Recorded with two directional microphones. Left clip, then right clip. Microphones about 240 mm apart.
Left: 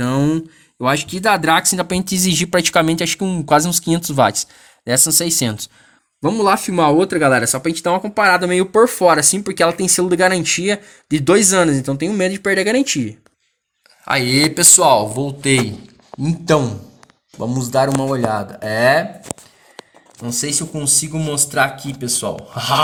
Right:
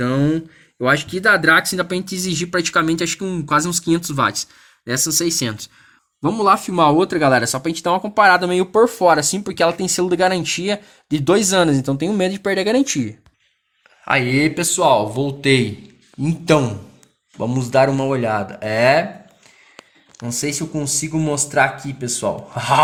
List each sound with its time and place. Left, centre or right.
0.0 s a sound: left
0.9 s speech: left
6.2 s speech: centre
20.4 s speech: centre